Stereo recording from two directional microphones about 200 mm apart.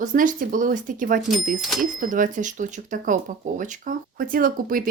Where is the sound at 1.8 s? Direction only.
40° right (ahead or behind).